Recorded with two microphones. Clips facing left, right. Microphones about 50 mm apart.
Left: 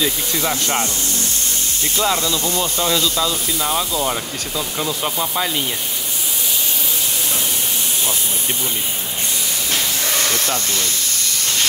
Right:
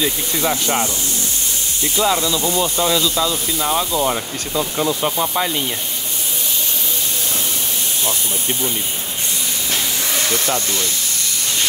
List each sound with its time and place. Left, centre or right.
0.0 s speech: centre
2.4 s speech: centre
9.7 s hiss: centre